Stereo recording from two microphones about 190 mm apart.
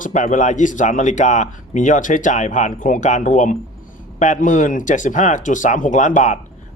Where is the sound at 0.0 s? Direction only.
40° left (ahead or behind).